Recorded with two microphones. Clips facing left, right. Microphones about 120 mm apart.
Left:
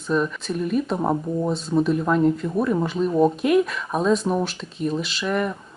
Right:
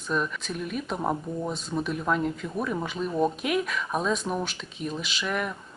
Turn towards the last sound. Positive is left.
turn(degrees=0)  # may be behind; listen again after turning